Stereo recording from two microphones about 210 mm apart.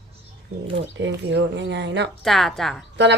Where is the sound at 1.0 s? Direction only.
55° right (ahead or behind).